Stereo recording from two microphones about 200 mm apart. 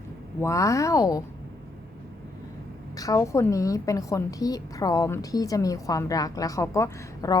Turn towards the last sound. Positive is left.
turn(degrees=15)  # may be behind; listen again after turning